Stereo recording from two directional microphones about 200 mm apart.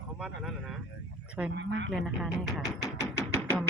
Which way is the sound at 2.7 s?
15° left (ahead or behind).